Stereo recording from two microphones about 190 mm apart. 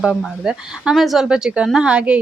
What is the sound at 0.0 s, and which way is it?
Speech, centre (ahead or behind).